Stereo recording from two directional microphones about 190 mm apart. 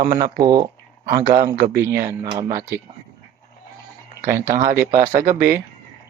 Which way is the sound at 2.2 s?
30° right (ahead or behind).